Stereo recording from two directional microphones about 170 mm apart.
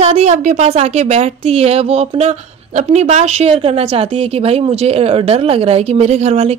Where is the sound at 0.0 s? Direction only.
40° right (ahead or behind).